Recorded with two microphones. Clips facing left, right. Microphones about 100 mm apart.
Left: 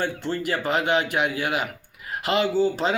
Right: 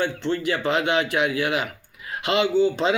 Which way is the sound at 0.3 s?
40° left (ahead or behind).